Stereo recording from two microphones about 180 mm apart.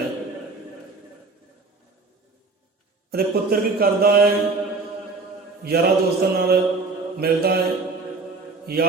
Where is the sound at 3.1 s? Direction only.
55° right (ahead or behind).